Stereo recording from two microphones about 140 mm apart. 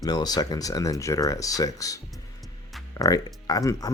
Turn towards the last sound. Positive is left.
turn(degrees=25)  # may be behind; listen again after turning